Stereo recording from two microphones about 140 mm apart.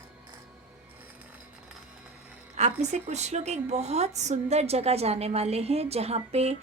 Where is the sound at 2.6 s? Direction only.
55° right (ahead or behind).